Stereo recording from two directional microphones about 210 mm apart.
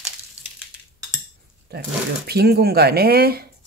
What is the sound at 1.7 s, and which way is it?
Speech, 50° right (ahead or behind).